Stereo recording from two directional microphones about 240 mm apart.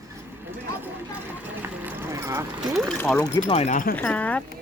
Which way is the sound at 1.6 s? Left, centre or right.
Centre.